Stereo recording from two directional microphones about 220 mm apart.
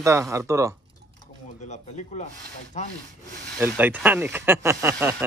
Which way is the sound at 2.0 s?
35° left (ahead or behind).